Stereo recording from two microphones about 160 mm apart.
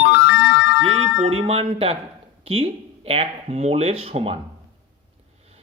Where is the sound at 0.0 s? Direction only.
90° left.